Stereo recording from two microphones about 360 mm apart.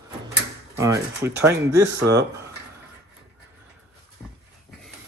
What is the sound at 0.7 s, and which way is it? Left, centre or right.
Speech, centre.